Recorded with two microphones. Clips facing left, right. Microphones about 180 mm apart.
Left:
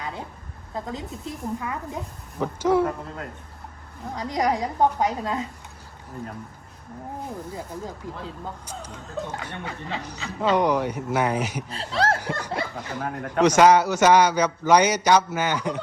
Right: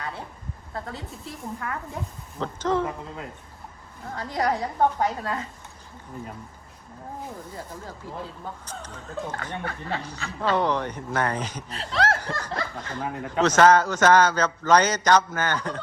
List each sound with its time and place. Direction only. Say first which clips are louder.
0.7 s speech: left 4 dB; 20° left (ahead or behind)
4.1 s speech: left 2 dB; 15° left (ahead or behind)
8.0 s speech: left 1 dB; 20° left (ahead or behind)
11.7 s speech: even; 30° left (ahead or behind)
12.2 s snicker: left 2 dB; 10° left (ahead or behind)
12.7 s speech: left 1 dB; 10° left (ahead or behind)
13.1 s speech: left 1 dB; centre (ahead or behind)
13.4 s speech: left 2 dB; 10° left (ahead or behind)